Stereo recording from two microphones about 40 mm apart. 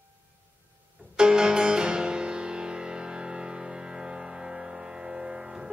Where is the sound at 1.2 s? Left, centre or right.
Centre.